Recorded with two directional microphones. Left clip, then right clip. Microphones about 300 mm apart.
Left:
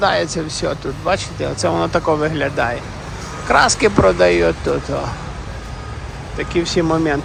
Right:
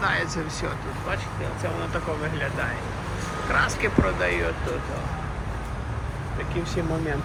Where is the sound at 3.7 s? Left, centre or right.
Centre.